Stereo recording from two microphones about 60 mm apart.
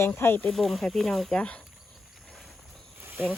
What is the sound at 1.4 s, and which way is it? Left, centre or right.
Speech, left.